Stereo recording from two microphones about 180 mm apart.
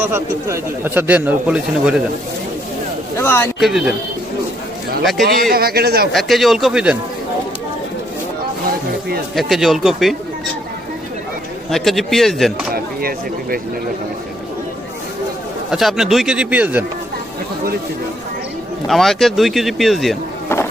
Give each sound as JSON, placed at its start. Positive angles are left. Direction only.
{"t": 0.0, "sound": "speech", "side_deg": -15}
{"t": 3.2, "sound": "speech", "side_deg": 15}
{"t": 3.6, "sound": "speech", "side_deg": -5}
{"t": 5.4, "sound": "speech", "side_deg": -55}
{"t": 6.1, "sound": "speech", "side_deg": 0}
{"t": 9.3, "sound": "speech", "side_deg": 0}
{"t": 11.7, "sound": "speech", "side_deg": 0}
{"t": 12.7, "sound": "speech", "side_deg": -55}
{"t": 15.7, "sound": "speech", "side_deg": 0}
{"t": 18.9, "sound": "speech", "side_deg": 0}